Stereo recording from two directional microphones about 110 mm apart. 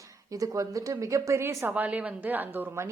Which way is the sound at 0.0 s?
30° right (ahead or behind).